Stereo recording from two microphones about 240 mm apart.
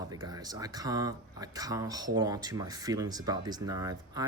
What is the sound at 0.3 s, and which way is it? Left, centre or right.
Speech, centre.